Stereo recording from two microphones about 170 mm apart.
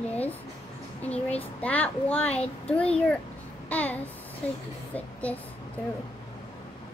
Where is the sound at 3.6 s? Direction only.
10° left (ahead or behind).